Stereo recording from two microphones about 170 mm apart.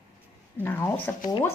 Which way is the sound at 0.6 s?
10° left (ahead or behind).